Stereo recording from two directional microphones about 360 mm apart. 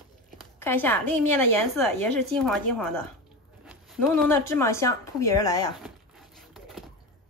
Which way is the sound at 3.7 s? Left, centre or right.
Centre.